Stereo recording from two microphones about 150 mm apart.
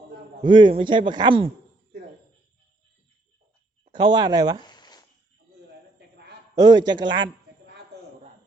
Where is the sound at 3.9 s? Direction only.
30° right (ahead or behind).